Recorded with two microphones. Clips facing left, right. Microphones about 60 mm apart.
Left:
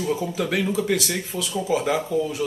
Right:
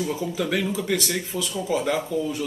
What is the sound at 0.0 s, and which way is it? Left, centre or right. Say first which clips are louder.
Speech: left 1 dB; centre.